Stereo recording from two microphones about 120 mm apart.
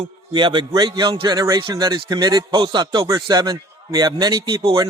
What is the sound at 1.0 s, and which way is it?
Speech, 45° right (ahead or behind).